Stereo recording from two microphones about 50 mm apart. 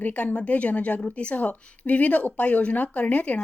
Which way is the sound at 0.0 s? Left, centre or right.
Left.